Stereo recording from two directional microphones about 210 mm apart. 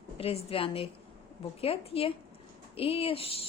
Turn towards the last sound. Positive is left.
turn(degrees=25)  # may be behind; listen again after turning